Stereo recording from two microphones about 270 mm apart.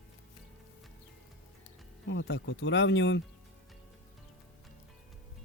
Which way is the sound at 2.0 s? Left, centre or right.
Left.